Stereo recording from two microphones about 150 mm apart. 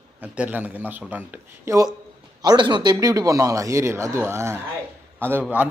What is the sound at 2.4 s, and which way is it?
A man's voice, 30° right (ahead or behind).